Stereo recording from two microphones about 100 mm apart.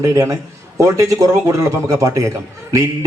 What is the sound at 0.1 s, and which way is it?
A man's voice, 35° right (ahead or behind).